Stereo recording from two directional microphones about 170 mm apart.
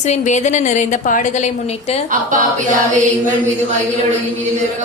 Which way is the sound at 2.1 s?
50° right (ahead or behind).